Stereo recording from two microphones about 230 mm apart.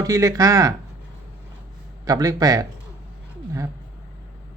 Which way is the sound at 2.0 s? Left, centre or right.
Centre.